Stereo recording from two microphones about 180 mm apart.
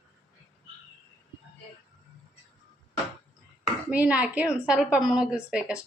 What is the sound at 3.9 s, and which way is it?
A woman's voice, 10° right (ahead or behind).